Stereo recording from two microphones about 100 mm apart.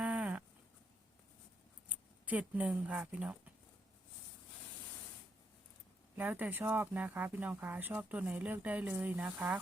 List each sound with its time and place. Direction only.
0.0 s a sound: 10° right (ahead or behind)
1.9 s speech: 15° right (ahead or behind)
6.1 s speech: 20° right (ahead or behind)